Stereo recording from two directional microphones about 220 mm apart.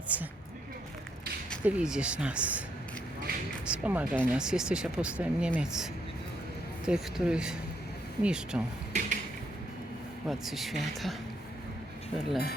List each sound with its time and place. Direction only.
0.1 s speech: 5° right (ahead or behind)
1.6 s speech: 5° right (ahead or behind)
3.7 s speech: 5° right (ahead or behind)
8.9 s a sound: 35° right (ahead or behind)
10.2 s speech: centre (ahead or behind)